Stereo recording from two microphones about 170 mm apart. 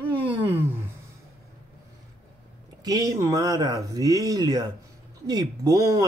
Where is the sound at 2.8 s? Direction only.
20° right (ahead or behind).